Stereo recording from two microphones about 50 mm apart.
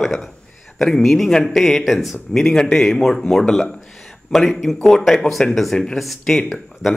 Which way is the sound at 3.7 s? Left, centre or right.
Centre.